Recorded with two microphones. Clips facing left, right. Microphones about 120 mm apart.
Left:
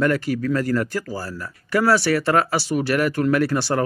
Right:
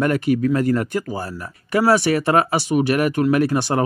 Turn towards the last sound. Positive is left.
turn(degrees=-20)  # may be behind; listen again after turning